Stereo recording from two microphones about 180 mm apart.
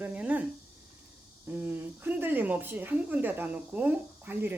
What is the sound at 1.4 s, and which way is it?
Speech, 10° right (ahead or behind).